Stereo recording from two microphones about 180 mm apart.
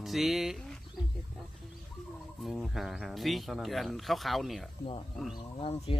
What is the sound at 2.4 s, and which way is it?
Speech, centre (ahead or behind).